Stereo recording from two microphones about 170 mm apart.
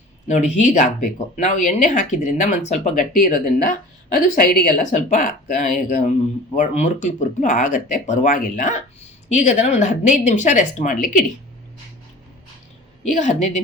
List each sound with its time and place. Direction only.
0.3 s speech: 45° left (ahead or behind)
13.1 s speech: 45° left (ahead or behind)